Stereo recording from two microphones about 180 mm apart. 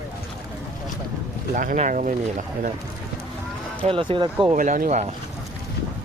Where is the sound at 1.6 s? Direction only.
45° right (ahead or behind).